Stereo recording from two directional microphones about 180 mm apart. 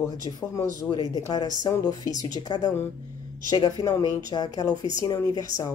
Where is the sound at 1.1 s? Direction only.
20° left (ahead or behind).